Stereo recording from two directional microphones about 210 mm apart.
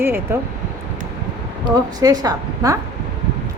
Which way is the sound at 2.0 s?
15° right (ahead or behind).